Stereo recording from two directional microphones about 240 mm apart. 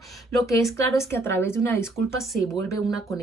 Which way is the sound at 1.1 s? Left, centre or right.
Centre.